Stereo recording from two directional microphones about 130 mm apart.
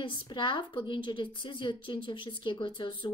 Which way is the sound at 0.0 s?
35° left (ahead or behind).